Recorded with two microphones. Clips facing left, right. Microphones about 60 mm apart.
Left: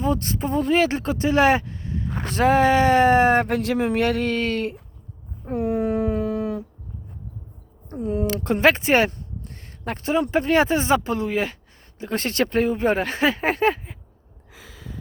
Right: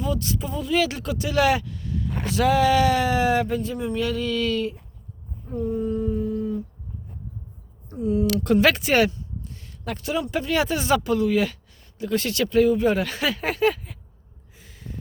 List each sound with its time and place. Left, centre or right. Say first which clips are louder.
0.0 s speech: left 3 dB; left
3.5 s speech: left 4 dB; left
5.5 s a sound: left 3 dB; left
7.9 s speech: right 1 dB; left
9.1 s speech: even; left